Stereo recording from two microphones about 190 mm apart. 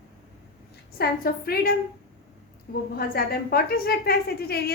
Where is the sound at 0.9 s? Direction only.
55° left (ahead or behind).